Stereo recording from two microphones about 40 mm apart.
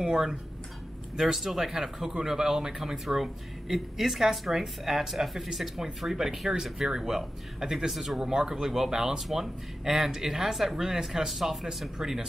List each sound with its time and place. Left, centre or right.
0.0 s speech: centre
8.2 s speech: centre